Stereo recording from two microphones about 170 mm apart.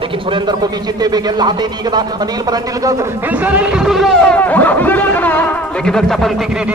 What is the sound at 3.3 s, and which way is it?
Speech, 10° right (ahead or behind).